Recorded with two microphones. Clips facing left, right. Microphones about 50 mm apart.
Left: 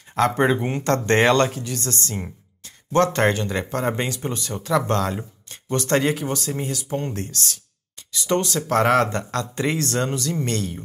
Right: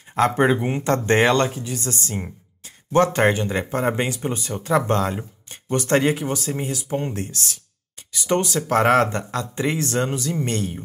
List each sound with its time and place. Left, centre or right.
0.3 s speech: centre; by 9.2 s right
9.3 s speech: centre